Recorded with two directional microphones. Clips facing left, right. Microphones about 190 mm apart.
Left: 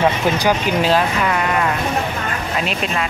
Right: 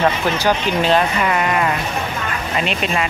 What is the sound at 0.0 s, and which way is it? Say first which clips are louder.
A woman's voice: left 1 dB; 10° left (ahead or behind).